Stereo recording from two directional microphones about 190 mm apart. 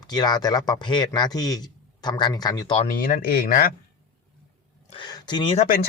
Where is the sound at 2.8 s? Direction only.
50° left (ahead or behind).